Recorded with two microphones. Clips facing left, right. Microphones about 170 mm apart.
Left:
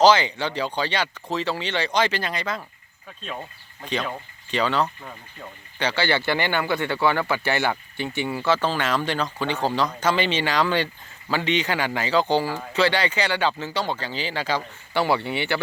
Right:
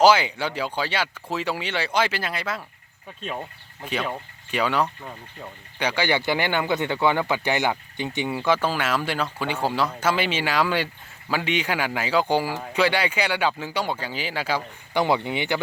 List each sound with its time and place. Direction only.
0.0 s speech: 10° right (ahead or behind)
3.8 s speech: 5° right (ahead or behind)